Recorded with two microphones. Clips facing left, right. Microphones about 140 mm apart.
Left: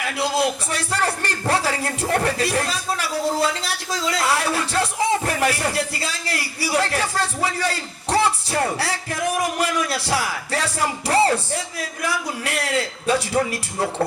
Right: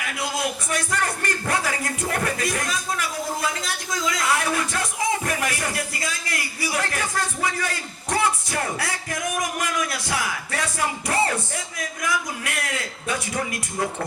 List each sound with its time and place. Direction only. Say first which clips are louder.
0.2 s a man's voice: left 6 dB; 30° left (ahead or behind)